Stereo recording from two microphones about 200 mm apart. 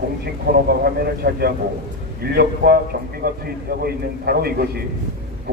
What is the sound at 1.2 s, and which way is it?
A man's voice, 55° right (ahead or behind).